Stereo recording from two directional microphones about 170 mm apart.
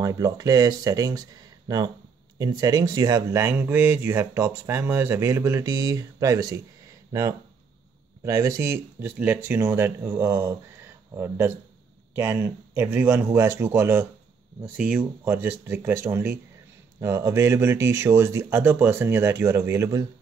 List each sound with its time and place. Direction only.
0.0 s speech: 20° right (ahead or behind)